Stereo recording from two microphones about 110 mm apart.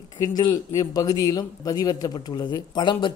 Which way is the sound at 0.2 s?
35° left (ahead or behind).